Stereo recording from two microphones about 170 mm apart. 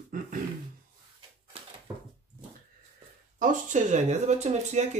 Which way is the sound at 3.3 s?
45° right (ahead or behind).